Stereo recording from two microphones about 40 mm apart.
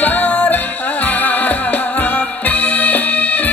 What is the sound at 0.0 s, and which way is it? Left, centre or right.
Music, left.